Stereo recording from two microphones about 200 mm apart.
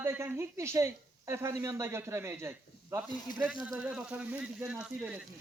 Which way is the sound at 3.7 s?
5° right (ahead or behind).